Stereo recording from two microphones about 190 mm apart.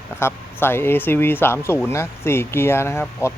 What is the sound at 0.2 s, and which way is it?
Speech, 10° left (ahead or behind).